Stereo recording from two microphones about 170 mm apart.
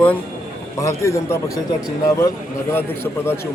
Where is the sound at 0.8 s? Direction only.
15° left (ahead or behind).